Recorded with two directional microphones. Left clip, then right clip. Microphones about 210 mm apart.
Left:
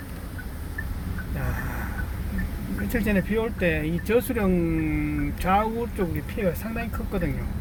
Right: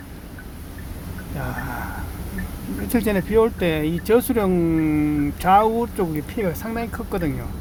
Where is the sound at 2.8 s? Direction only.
25° right (ahead or behind).